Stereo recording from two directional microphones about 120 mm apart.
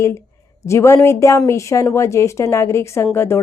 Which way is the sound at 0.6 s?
25° left (ahead or behind).